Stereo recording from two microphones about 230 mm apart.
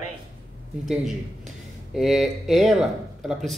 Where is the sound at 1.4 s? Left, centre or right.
Centre.